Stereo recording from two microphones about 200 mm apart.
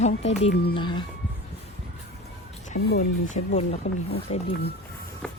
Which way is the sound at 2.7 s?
55° left (ahead or behind).